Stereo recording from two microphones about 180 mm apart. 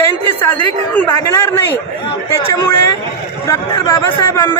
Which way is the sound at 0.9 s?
10° left (ahead or behind).